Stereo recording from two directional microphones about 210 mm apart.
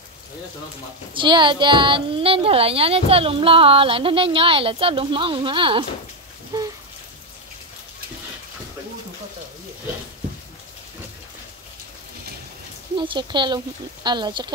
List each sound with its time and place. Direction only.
1.1 s speech: 20° right (ahead or behind)
12.9 s speech: 25° right (ahead or behind)